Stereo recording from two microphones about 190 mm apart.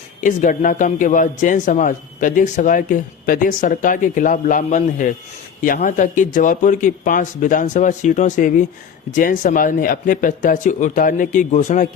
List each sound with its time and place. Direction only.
0.2 s a man's voice: 45° left (ahead or behind)